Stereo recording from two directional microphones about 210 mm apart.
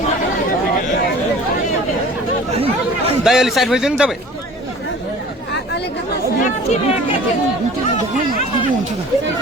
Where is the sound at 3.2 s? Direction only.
Centre (ahead or behind).